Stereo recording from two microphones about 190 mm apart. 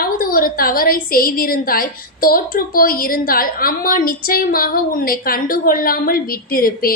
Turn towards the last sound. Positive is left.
turn(degrees=50)  # may be behind; listen again after turning